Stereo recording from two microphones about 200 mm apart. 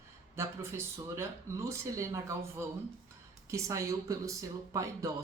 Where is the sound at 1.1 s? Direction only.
15° right (ahead or behind).